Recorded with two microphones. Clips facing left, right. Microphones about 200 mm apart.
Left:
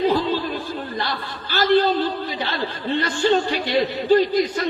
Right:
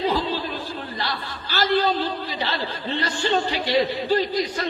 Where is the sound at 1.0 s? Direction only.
50° left (ahead or behind).